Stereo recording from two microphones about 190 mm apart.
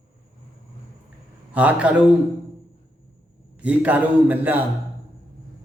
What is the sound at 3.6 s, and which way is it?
Speech, 10° right (ahead or behind).